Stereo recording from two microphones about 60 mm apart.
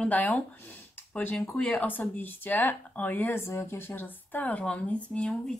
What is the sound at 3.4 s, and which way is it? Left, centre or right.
Speech, left.